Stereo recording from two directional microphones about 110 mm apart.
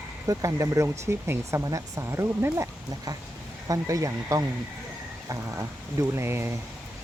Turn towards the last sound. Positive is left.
turn(degrees=-25)  # may be behind; listen again after turning